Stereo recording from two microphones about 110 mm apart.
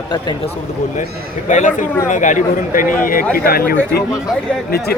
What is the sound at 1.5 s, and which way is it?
Speech, 90° left.